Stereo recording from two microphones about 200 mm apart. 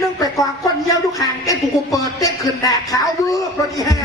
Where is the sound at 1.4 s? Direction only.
15° left (ahead or behind).